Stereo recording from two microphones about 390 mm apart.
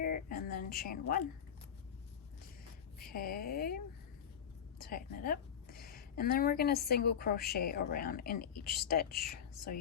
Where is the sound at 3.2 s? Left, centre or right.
Left.